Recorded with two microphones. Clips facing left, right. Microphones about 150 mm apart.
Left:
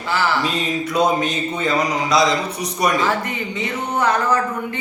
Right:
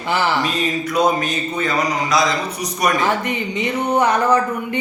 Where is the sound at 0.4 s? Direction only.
25° left (ahead or behind).